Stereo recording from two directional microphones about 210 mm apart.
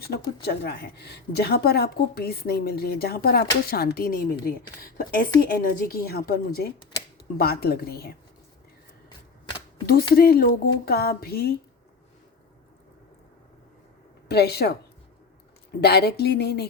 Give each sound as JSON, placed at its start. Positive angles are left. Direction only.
{"t": 0.4, "sound": "a woman's voice", "side_deg": 50}
{"t": 9.8, "sound": "a woman's voice", "side_deg": 45}
{"t": 14.3, "sound": "a woman's voice", "side_deg": 50}
{"t": 15.8, "sound": "a woman's voice", "side_deg": 50}